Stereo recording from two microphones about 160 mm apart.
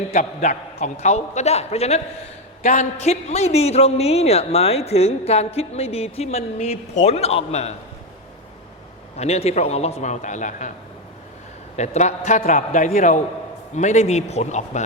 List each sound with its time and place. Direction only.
0.1 s a man's voice: 45° left (ahead or behind)
9.1 s a man's voice: 40° left (ahead or behind)
11.8 s a man's voice: 45° left (ahead or behind)